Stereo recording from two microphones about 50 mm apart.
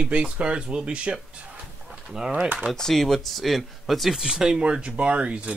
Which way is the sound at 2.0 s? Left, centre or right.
Centre.